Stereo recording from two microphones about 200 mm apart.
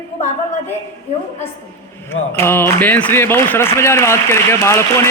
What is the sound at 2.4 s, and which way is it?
A man's voice, 10° left (ahead or behind).